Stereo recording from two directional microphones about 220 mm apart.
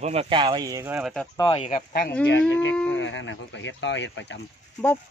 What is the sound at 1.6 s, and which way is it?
Speech, 30° left (ahead or behind).